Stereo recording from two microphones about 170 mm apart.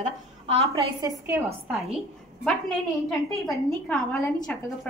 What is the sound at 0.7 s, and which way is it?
Speech, 20° right (ahead or behind).